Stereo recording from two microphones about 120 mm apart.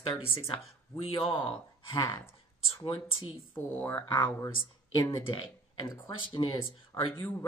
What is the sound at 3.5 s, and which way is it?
Speech, 15° left (ahead or behind).